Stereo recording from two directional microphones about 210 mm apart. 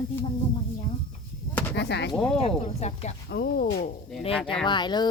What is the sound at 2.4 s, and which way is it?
Speech, 30° left (ahead or behind).